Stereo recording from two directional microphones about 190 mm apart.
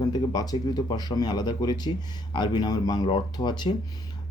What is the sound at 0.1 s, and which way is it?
Speech, 20° left (ahead or behind).